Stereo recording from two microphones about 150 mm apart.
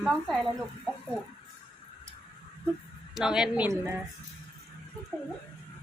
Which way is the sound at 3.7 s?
15° right (ahead or behind).